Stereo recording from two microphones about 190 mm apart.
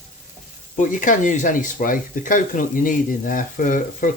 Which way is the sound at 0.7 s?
45° left (ahead or behind).